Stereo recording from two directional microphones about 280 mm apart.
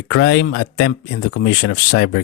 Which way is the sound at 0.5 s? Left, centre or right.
Left.